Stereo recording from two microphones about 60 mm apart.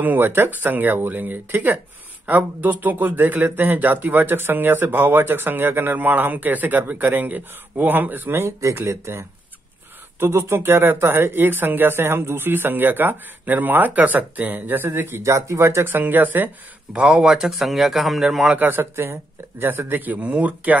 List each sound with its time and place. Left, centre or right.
0.0 s speech: right
8.4 s speech: right
15.9 s speech: right
16.9 s a man's voice: centre
18.6 s speech: right